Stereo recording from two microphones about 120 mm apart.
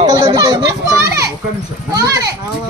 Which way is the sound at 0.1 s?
30° right (ahead or behind).